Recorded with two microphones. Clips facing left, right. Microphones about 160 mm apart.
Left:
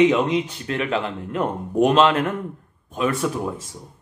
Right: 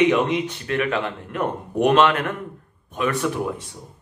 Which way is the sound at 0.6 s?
30° left (ahead or behind).